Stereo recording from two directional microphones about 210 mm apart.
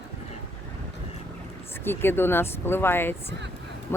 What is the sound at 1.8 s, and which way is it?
Speech, 10° left (ahead or behind).